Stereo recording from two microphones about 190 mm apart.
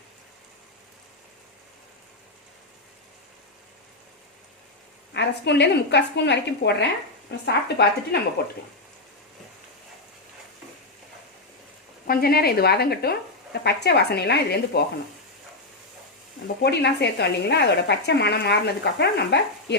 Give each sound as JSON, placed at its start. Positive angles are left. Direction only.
{"t": 5.1, "sound": "speech", "side_deg": 65}
{"t": 12.0, "sound": "speech", "side_deg": 50}
{"t": 16.6, "sound": "speech", "side_deg": 60}